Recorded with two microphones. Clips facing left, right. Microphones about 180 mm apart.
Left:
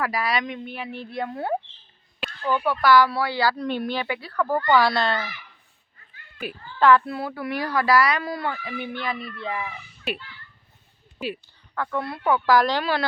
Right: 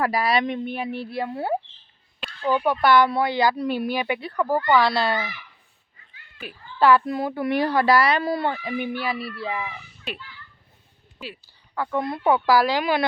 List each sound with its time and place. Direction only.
0.0 s speech: 30° right (ahead or behind)
0.9 s speech: 10° right (ahead or behind)
4.7 s speech: centre (ahead or behind)
5.0 s speech: 15° right (ahead or behind)
6.7 s speech: 10° right (ahead or behind); by 8.7 s 30° right (ahead or behind)
8.8 s speech: 10° right (ahead or behind)
11.7 s speech: 15° right (ahead or behind)
12.5 s speech: 10° right (ahead or behind)